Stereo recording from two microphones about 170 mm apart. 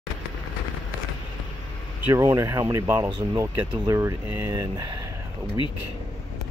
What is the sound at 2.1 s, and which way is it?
Speech, 20° right (ahead or behind).